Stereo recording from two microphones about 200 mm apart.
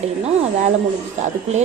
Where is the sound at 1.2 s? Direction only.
35° right (ahead or behind).